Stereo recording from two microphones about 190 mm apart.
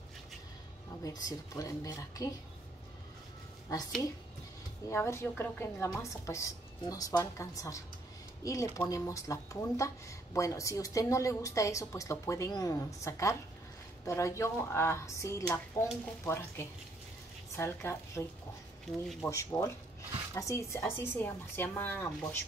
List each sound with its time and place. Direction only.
1.0 s speech: 20° left (ahead or behind)
4.8 s speech: 15° left (ahead or behind)
19.2 s speech: 15° left (ahead or behind)